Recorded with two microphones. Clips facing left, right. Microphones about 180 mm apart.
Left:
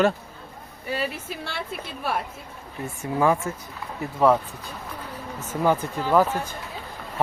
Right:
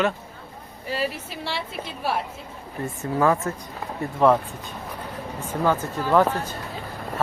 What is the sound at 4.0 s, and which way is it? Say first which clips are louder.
Speech: right 1 dB; centre (ahead or behind).